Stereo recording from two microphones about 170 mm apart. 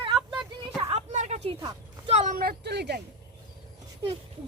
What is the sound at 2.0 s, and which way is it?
Speech, 40° right (ahead or behind).